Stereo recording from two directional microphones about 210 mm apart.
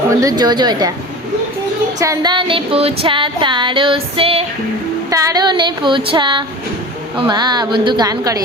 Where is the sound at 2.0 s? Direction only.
15° right (ahead or behind).